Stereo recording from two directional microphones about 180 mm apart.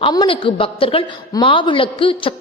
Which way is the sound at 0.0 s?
25° left (ahead or behind).